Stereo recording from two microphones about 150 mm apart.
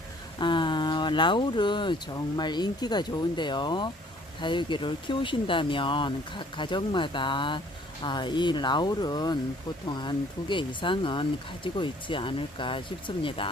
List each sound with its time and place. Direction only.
0.3 s speech: 30° left (ahead or behind)